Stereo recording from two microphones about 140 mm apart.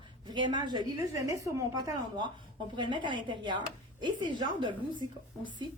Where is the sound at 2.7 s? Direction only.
35° right (ahead or behind).